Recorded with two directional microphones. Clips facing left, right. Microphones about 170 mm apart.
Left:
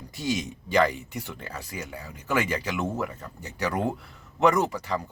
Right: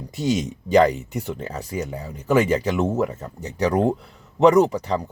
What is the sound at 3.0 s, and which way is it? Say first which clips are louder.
Speech: right 8 dB; 20° right (ahead or behind).